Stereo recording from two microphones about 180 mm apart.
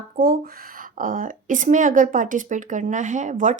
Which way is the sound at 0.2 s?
55° right (ahead or behind).